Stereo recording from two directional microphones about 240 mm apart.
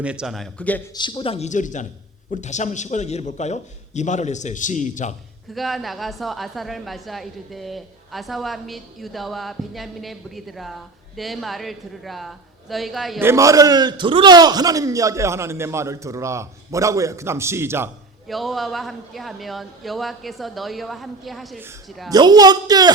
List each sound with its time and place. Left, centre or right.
0.0 s a woman's voice: centre
0.9 s a man's voice: centre
5.5 s a woman's voice: centre
22.1 s a woman's voice: centre